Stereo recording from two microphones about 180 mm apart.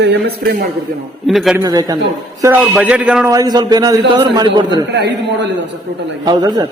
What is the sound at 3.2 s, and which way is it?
A man's voice, 20° right (ahead or behind).